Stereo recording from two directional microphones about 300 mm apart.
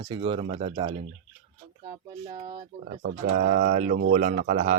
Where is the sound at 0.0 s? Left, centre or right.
Centre.